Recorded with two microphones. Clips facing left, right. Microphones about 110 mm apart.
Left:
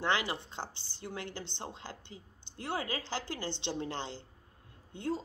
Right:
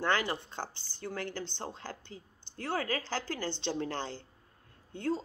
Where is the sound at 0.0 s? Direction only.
15° left (ahead or behind).